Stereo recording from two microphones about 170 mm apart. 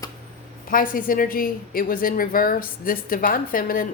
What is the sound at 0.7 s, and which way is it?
A woman's voice, 55° left (ahead or behind).